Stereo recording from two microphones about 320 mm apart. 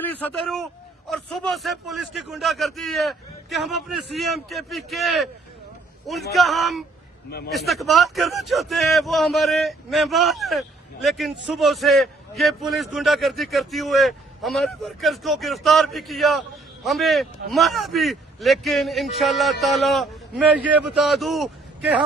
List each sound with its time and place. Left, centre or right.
0.0 s a man's voice: centre
6.3 s speech: centre
7.3 s a man's voice: left
7.5 s speech: centre